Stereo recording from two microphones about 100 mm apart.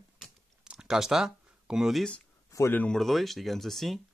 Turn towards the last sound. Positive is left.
turn(degrees=0)  # may be behind; listen again after turning